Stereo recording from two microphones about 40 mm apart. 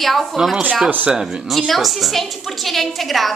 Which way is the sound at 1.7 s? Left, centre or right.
Centre.